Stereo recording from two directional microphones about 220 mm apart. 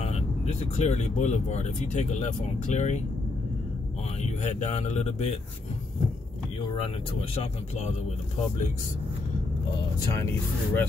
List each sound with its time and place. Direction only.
0.0 s speech: 30° left (ahead or behind)
4.2 s speech: 30° left (ahead or behind)
7.2 s speech: 25° left (ahead or behind)
10.1 s speech: 10° left (ahead or behind)